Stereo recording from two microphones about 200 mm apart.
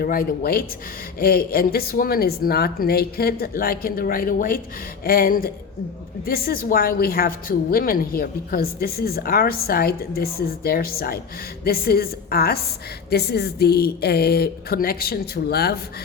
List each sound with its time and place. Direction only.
0.0 s a woman's voice: 50° left (ahead or behind)